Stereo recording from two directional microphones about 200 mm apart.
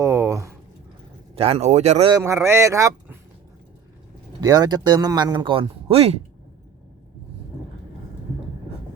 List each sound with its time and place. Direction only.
0.0 s a sound: 15° right (ahead or behind)
1.4 s speech: 30° right (ahead or behind)
2.1 s speech: 15° right (ahead or behind)
4.4 s speech: 20° right (ahead or behind)